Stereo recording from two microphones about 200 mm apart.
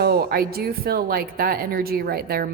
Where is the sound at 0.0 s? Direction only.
50° right (ahead or behind).